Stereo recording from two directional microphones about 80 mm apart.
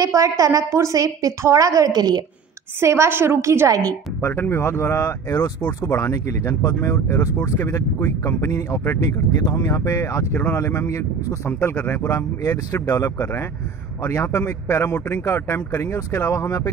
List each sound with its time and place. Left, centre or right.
0.0 s a woman's voice: right
2.8 s a woman's voice: right
4.2 s speech: left
9.0 s speech: left
11.7 s speech: left